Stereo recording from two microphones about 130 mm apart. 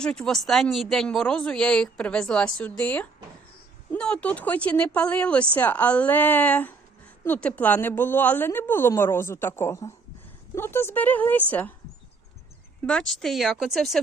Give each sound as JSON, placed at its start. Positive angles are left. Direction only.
{"t": 0.0, "sound": "speech", "side_deg": 5}
{"t": 12.8, "sound": "speech", "side_deg": 5}